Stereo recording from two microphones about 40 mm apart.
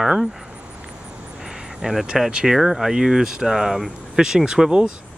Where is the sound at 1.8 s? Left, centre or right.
Centre; by 4.9 s right.